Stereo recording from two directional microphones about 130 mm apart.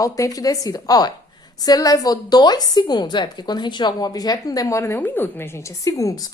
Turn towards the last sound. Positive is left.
turn(degrees=25)  # may be behind; listen again after turning